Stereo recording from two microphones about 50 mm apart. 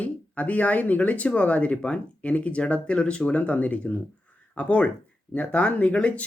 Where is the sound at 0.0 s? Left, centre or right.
Left.